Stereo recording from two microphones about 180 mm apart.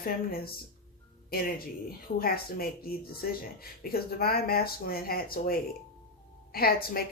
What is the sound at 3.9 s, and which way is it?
Speech, 60° left (ahead or behind).